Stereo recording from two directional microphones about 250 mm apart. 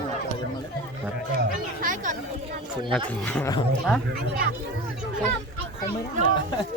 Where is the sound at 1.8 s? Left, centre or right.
Right.